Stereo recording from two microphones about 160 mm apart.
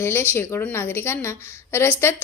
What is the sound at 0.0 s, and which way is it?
A woman's voice, 15° left (ahead or behind).